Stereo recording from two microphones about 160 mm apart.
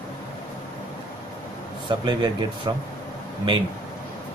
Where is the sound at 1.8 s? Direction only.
30° right (ahead or behind).